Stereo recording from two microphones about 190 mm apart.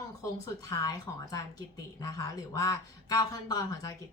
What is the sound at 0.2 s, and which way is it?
A woman's voice, 15° left (ahead or behind).